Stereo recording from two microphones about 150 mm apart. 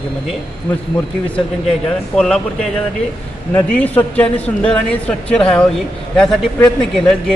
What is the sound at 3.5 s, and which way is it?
A woman's voice, 10° left (ahead or behind).